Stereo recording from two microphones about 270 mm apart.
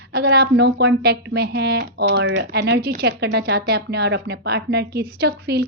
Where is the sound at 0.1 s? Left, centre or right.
Right.